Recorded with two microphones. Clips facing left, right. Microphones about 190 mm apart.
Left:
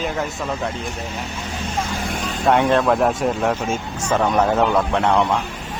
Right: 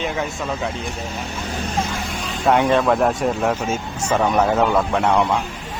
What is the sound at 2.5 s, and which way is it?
Speech, centre (ahead or behind).